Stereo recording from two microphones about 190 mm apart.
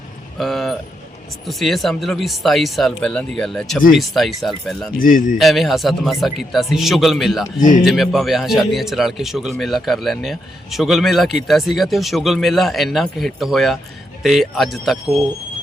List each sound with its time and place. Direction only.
0.3 s vehicle: centre (ahead or behind)
1.5 s speech: centre (ahead or behind)
4.9 s a man's voice: 45° left (ahead or behind)
5.4 s speech: centre (ahead or behind)